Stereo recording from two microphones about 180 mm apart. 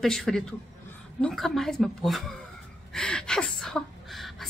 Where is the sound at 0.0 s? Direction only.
5° left (ahead or behind).